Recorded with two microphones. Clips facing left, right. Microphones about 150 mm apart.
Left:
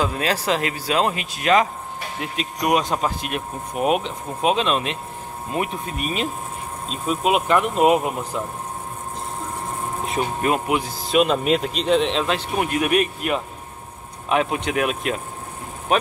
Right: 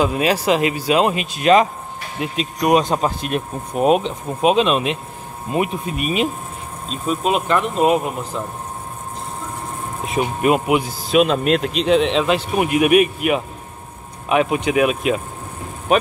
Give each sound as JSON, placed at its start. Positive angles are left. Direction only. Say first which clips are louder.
{"t": 0.0, "sound": "speech", "louder": "right 5 dB", "side_deg": -15}
{"t": 4.4, "sound": "speech", "louder": "right 4 dB", "side_deg": -15}
{"t": 6.9, "sound": "speech", "louder": "right 1 dB", "side_deg": 5}
{"t": 10.2, "sound": "speech", "louder": "right 6 dB", "side_deg": -15}
{"t": 11.1, "sound": "a man's voice", "louder": "right 2 dB", "side_deg": -5}